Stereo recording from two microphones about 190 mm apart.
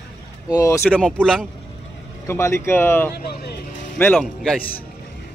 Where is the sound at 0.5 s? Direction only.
15° left (ahead or behind).